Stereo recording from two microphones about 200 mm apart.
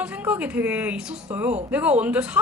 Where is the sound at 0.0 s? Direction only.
5° right (ahead or behind).